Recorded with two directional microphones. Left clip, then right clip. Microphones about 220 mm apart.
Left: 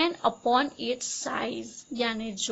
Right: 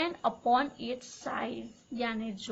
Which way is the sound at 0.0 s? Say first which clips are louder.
Left 5 dB; 40° left (ahead or behind).